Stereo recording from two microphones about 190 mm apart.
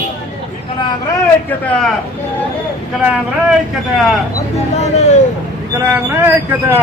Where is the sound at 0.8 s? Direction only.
15° left (ahead or behind).